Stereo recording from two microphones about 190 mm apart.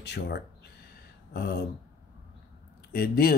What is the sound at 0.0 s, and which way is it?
Speech, 60° left (ahead or behind).